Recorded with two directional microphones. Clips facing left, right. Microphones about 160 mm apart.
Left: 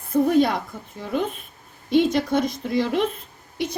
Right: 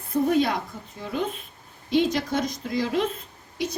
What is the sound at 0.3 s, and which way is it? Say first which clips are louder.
Speech: left 3 dB; 50° left (ahead or behind).